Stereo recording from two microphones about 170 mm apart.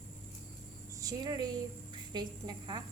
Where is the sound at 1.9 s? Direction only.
25° right (ahead or behind).